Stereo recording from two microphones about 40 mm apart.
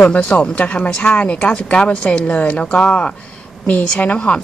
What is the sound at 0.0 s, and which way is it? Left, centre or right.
A woman's voice, left.